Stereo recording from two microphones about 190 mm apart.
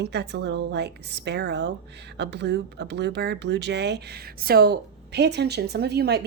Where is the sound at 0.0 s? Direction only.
65° right (ahead or behind).